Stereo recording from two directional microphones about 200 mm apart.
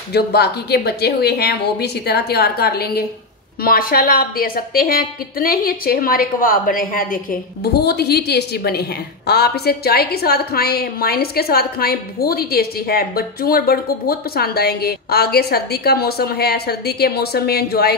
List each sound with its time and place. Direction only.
0.1 s a woman's voice: 55° left (ahead or behind)